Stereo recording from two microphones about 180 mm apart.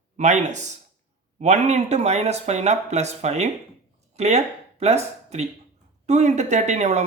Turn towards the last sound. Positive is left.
turn(degrees=-40)  # may be behind; listen again after turning